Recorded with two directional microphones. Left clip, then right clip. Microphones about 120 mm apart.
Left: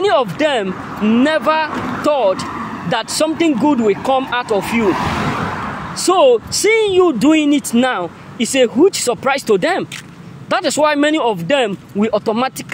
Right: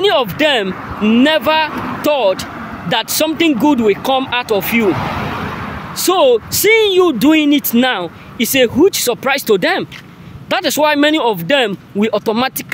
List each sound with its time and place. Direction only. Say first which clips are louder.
0.0 s speech: right 1 dB; 25° right (ahead or behind)
1.7 s speech: even; centre (ahead or behind)
2.0 s speech: right 1 dB; 25° right (ahead or behind)
4.8 s speech: even; centre (ahead or behind)
5.1 s a sound: left 2 dB; 20° left (ahead or behind)
6.0 s speech: even; 25° right (ahead or behind)